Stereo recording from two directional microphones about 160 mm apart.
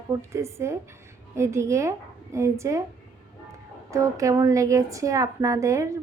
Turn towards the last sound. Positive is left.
turn(degrees=-20)  # may be behind; listen again after turning